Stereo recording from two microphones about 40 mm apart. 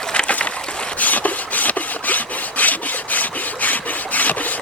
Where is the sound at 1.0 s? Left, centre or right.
Left.